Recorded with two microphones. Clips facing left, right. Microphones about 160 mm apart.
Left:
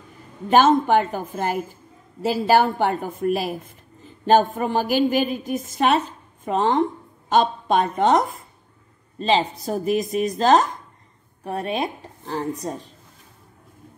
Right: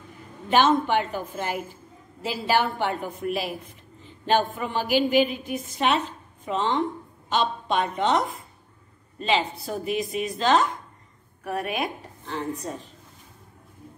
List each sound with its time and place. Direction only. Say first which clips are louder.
0.5 s a woman's voice: left 4 dB; 45° left (ahead or behind)
11.4 s a woman's voice: left 3 dB; 30° left (ahead or behind)